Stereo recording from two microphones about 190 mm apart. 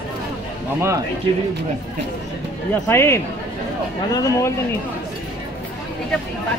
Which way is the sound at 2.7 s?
15° left (ahead or behind).